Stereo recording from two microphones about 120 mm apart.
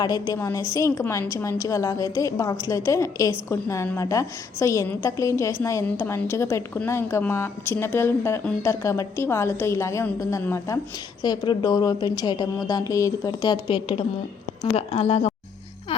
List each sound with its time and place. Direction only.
0.0 s a woman's voice: 30° left (ahead or behind)
11.2 s a woman's voice: 35° left (ahead or behind)
14.8 s speech: 65° left (ahead or behind)